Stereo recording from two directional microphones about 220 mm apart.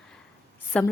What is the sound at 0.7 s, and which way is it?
Speech, 5° left (ahead or behind).